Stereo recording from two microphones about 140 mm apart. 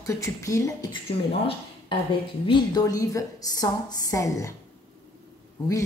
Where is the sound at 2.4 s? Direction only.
30° left (ahead or behind).